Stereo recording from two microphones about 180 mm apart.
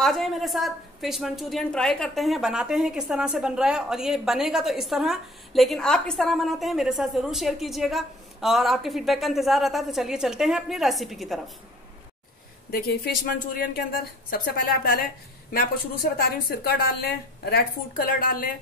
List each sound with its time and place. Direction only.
0.0 s a woman's voice: centre (ahead or behind)
12.7 s a woman's voice: 60° left (ahead or behind)